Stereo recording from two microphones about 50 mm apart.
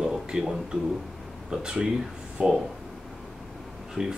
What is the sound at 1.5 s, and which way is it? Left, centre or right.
Speech, centre.